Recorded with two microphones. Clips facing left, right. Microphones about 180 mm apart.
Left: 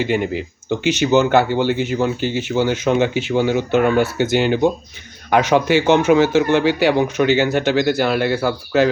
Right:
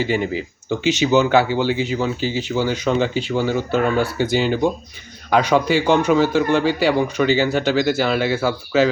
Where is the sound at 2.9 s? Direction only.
10° left (ahead or behind).